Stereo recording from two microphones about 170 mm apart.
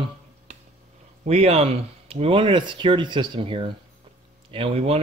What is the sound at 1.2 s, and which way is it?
Speech, 40° right (ahead or behind).